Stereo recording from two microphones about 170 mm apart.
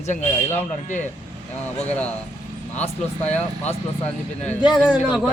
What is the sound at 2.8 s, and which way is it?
Speech, 40° left (ahead or behind).